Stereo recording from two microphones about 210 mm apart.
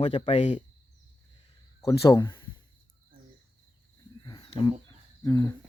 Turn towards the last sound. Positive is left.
turn(degrees=15)  # may be behind; listen again after turning